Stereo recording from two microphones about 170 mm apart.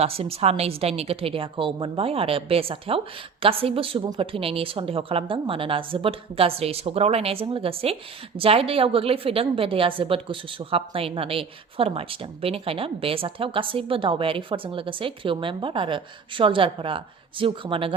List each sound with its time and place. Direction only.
0.0 s a woman's voice: 35° right (ahead or behind)